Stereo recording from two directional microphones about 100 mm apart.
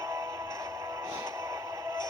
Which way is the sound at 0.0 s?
30° right (ahead or behind).